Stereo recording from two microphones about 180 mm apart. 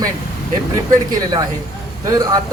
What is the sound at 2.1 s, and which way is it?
Speech, 20° right (ahead or behind).